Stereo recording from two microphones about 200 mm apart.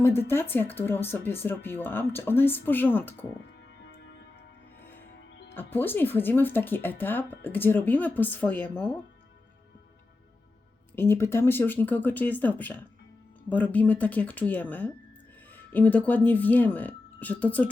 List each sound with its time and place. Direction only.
0.0 s speech: 10° left (ahead or behind)
3.8 s music: 60° left (ahead or behind)
5.3 s music: 60° left (ahead or behind)
5.5 s speech: 10° left (ahead or behind)
10.9 s speech: 10° left (ahead or behind)